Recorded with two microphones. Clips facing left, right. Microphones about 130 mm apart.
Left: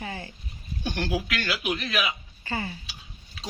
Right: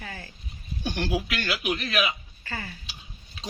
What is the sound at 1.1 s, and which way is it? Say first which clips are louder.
Speech: even; 15° right (ahead or behind).